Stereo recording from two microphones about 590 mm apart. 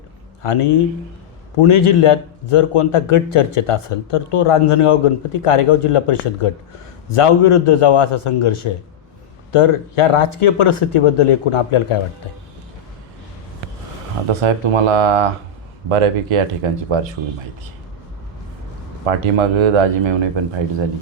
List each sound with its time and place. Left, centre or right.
0.4 s a man's voice: left
14.4 s speech: right
19.2 s speech: right